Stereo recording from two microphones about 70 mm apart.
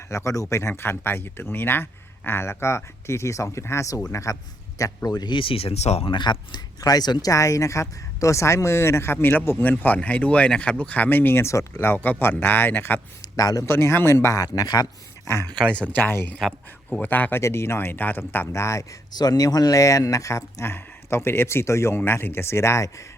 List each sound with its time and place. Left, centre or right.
0.1 s speech: left
5.0 s speech: left
6.1 s speech: left
11.4 s speech: left
13.3 s speech: left
13.7 s speech: left
14.3 s speech: left
15.2 s speech: left
15.7 s speech: centre
17.4 s speech: left
18.6 s speech: left
19.1 s speech: left